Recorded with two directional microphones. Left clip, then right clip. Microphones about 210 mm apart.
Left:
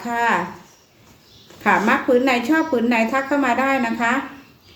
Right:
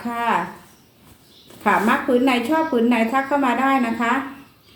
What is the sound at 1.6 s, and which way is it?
A woman's voice, 15° left (ahead or behind).